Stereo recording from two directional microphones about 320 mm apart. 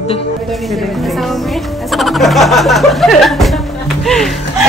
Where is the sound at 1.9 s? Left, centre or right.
Centre.